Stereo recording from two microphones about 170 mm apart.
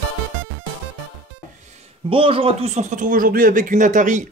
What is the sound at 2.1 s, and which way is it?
Speech, 30° right (ahead or behind).